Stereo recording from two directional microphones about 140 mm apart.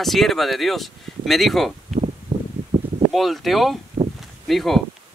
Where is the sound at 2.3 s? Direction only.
35° right (ahead or behind).